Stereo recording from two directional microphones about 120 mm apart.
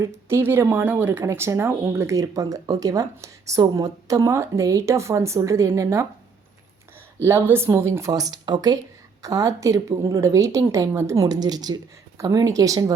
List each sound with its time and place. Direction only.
0.0 s a woman's voice: 20° right (ahead or behind)
7.3 s a woman's voice: 20° right (ahead or behind)